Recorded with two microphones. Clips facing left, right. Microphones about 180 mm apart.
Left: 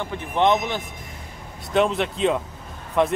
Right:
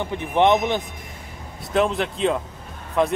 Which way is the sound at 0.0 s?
20° right (ahead or behind).